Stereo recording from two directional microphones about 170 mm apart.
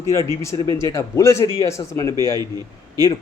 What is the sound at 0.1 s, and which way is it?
Speech, 15° left (ahead or behind).